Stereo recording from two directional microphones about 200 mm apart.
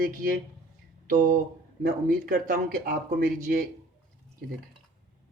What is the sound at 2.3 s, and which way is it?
Speech, 45° right (ahead or behind).